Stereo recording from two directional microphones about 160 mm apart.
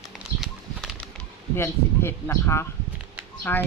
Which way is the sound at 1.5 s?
15° left (ahead or behind).